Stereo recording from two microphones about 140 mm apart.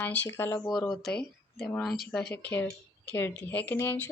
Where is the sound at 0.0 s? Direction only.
15° left (ahead or behind).